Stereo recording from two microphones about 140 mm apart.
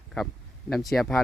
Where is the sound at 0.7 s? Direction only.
Centre (ahead or behind).